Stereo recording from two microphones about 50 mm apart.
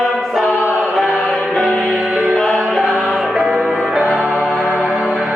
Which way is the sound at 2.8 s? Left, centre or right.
Right.